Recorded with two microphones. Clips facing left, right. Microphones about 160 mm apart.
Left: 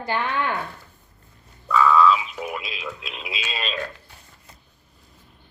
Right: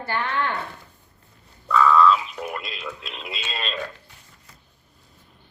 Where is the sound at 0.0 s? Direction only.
15° left (ahead or behind).